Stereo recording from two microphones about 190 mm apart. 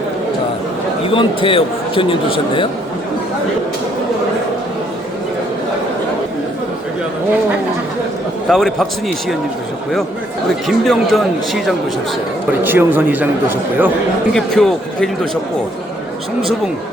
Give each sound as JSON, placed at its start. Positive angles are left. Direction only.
{"t": 1.0, "sound": "a man's voice", "side_deg": 30}
{"t": 8.4, "sound": "speech", "side_deg": 0}
{"t": 10.7, "sound": "speech", "side_deg": 0}
{"t": 12.6, "sound": "speech", "side_deg": -10}
{"t": 14.3, "sound": "speech", "side_deg": 5}